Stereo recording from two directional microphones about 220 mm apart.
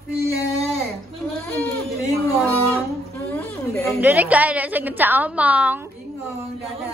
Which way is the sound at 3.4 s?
5° left (ahead or behind).